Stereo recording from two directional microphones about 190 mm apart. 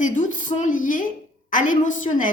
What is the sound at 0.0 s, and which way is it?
A woman's voice, 40° left (ahead or behind).